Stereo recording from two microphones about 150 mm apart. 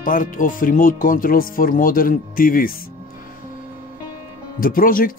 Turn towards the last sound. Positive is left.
turn(degrees=70)  # may be behind; listen again after turning